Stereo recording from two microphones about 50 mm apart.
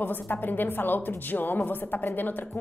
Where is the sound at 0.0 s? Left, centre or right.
Left.